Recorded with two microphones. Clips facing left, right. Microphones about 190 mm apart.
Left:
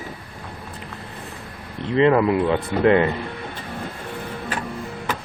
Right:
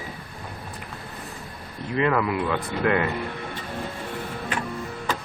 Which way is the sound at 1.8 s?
25° left (ahead or behind).